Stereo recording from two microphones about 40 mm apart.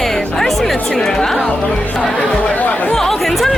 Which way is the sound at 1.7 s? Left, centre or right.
Centre.